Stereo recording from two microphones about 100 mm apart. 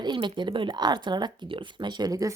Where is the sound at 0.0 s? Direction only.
50° right (ahead or behind).